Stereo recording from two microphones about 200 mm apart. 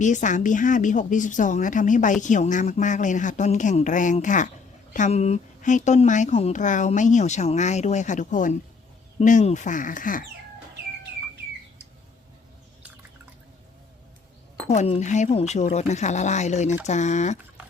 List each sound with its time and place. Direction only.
0.0 s a woman's voice: 40° left (ahead or behind)
14.7 s a woman's voice: 35° left (ahead or behind)